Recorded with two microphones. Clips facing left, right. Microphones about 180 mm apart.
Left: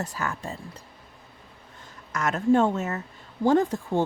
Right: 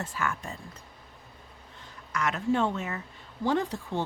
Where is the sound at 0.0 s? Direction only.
40° left (ahead or behind).